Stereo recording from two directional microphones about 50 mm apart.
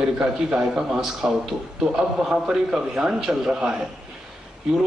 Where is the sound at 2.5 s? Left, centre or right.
Centre.